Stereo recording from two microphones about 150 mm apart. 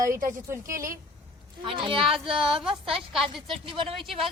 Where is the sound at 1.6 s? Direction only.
35° right (ahead or behind).